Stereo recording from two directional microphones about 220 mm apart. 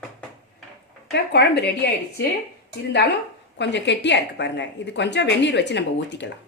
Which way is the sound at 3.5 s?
50° left (ahead or behind).